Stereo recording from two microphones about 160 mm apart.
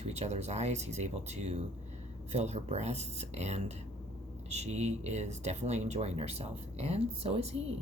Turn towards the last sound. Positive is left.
turn(degrees=-40)  # may be behind; listen again after turning